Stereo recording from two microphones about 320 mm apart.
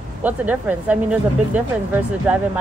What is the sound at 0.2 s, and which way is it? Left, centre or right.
Speech, centre.